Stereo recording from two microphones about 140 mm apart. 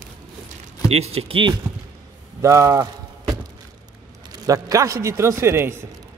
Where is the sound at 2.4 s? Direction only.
25° right (ahead or behind).